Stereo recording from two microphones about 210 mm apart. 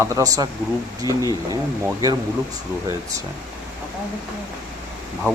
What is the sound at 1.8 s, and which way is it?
Speech, 15° right (ahead or behind).